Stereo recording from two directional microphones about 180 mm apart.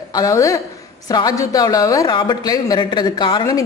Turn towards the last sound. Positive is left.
turn(degrees=25)  # may be behind; listen again after turning